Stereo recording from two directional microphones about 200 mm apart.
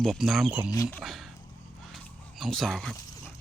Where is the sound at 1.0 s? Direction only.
Centre (ahead or behind).